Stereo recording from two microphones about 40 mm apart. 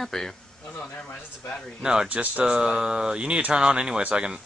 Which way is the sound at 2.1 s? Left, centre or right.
Right.